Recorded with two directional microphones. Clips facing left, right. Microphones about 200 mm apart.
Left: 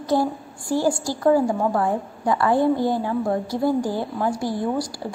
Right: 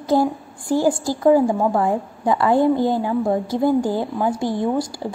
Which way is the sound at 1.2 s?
20° right (ahead or behind).